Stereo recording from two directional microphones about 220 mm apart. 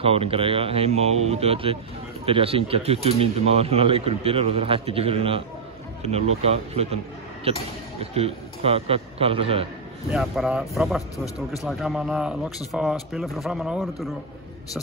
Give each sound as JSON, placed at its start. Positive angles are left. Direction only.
{"t": 0.0, "sound": "speech", "side_deg": -25}
{"t": 8.0, "sound": "speech", "side_deg": -25}
{"t": 10.1, "sound": "a man's voice", "side_deg": 0}